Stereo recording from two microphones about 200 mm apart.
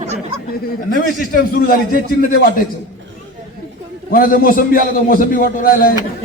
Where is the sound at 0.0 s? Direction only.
35° right (ahead or behind).